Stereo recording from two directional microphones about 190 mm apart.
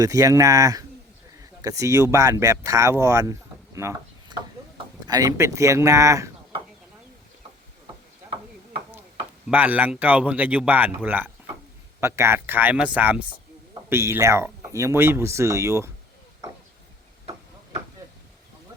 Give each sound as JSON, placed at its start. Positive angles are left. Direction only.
{"t": 0.0, "sound": "speech", "side_deg": -15}
{"t": 3.8, "sound": "a sound", "side_deg": -15}
{"t": 5.0, "sound": "speech", "side_deg": -20}
{"t": 9.5, "sound": "speech", "side_deg": -10}